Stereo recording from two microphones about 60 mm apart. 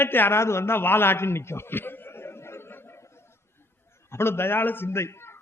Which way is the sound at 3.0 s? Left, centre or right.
Left.